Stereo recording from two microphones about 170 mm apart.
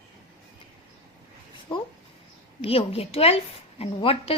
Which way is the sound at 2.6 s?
35° left (ahead or behind).